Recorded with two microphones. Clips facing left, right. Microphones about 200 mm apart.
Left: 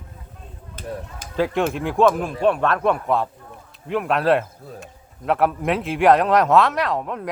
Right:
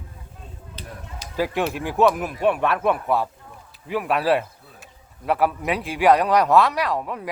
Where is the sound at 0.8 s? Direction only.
50° left (ahead or behind).